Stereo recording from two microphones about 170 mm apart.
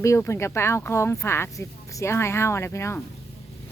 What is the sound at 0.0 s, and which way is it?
Speech, 15° left (ahead or behind).